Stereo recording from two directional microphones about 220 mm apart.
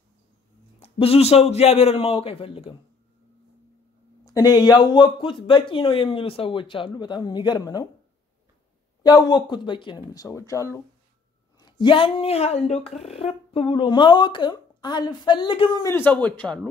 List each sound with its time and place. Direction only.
0.7 s speech: 25° left (ahead or behind)
4.2 s speech: 15° left (ahead or behind)
9.0 s speech: 20° left (ahead or behind)